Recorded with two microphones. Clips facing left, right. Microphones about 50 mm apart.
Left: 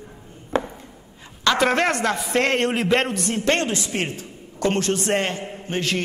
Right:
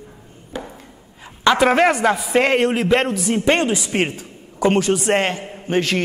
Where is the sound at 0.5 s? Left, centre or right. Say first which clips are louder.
Left 7 dB; left.